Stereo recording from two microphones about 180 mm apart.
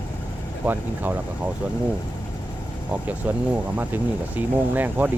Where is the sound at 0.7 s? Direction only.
10° right (ahead or behind).